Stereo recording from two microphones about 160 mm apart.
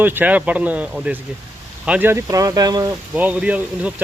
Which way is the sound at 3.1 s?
5° right (ahead or behind).